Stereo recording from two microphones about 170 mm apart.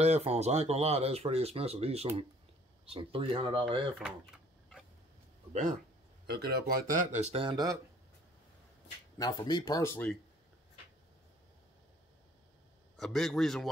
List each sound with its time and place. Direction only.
0.0 s speech: 40° right (ahead or behind)
5.5 s speech: 45° right (ahead or behind)
6.2 s speech: 70° right (ahead or behind); by 7.8 s 20° right (ahead or behind)
9.2 s speech: 25° left (ahead or behind)
12.9 s a man's voice: centre (ahead or behind)